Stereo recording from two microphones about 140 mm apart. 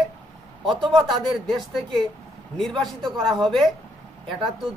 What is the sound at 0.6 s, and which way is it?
Speech, 35° right (ahead or behind).